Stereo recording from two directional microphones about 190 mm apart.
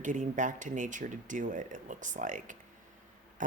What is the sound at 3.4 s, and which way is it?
Insect, 40° right (ahead or behind).